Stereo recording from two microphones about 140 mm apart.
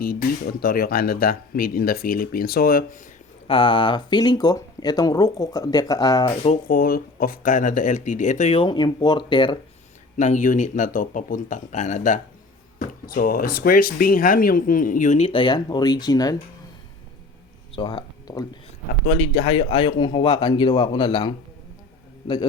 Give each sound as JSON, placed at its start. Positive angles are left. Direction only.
{"t": 0.6, "sound": "speech", "side_deg": 90}
{"t": 3.4, "sound": "speech", "side_deg": 40}
{"t": 6.7, "sound": "speech", "side_deg": 90}
{"t": 8.5, "sound": "speech", "side_deg": 35}
{"t": 10.2, "sound": "speech", "side_deg": 60}
{"t": 13.1, "sound": "speech", "side_deg": 90}
{"t": 15.3, "sound": "speech", "side_deg": 35}
{"t": 17.7, "sound": "speech", "side_deg": 35}
{"t": 19.0, "sound": "speech", "side_deg": 55}